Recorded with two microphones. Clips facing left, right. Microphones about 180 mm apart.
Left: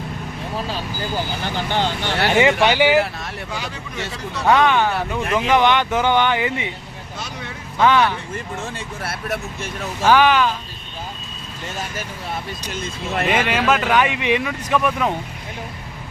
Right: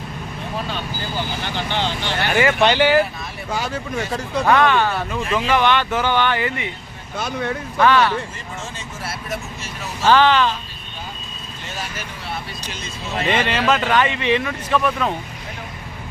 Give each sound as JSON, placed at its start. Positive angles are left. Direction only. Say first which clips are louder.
{"t": 1.5, "sound": "speech", "louder": "left 2 dB", "side_deg": 45}
{"t": 2.3, "sound": "speech", "louder": "left 2 dB", "side_deg": 20}
{"t": 2.6, "sound": "speech", "louder": "even", "side_deg": 10}
{"t": 3.5, "sound": "speech", "louder": "right 10 dB", "side_deg": -45}
{"t": 4.4, "sound": "speech", "louder": "left 1 dB", "side_deg": 15}
{"t": 7.2, "sound": "speech", "louder": "right 9 dB", "side_deg": -55}
{"t": 7.8, "sound": "speech", "louder": "even", "side_deg": 15}
{"t": 9.0, "sound": "speech", "louder": "left 2 dB", "side_deg": 60}
{"t": 10.0, "sound": "speech", "louder": "even", "side_deg": 10}
{"t": 12.7, "sound": "speech", "louder": "left 3 dB", "side_deg": 50}
{"t": 13.2, "sound": "speech", "louder": "even", "side_deg": 10}